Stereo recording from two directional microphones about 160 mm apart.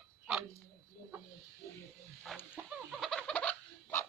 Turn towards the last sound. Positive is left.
turn(degrees=10)  # may be behind; listen again after turning